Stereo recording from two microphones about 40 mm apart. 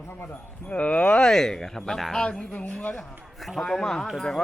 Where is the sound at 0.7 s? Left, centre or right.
Left.